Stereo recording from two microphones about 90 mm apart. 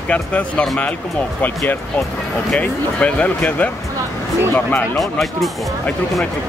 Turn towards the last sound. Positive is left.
turn(degrees=0)  # may be behind; listen again after turning